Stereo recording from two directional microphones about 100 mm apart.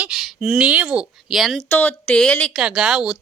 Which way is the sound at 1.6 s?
20° left (ahead or behind).